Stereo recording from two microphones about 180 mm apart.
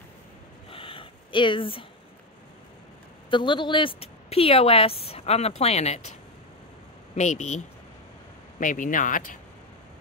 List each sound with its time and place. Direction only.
0.7 s a sound: 30° left (ahead or behind)
3.3 s speech: 25° left (ahead or behind)
7.2 s speech: 40° left (ahead or behind)